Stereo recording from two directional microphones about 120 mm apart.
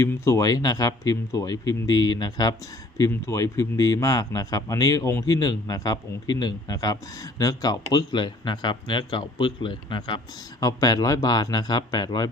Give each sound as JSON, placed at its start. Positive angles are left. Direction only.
{"t": 0.0, "sound": "a man's voice", "side_deg": 25}
{"t": 10.6, "sound": "speech", "side_deg": 30}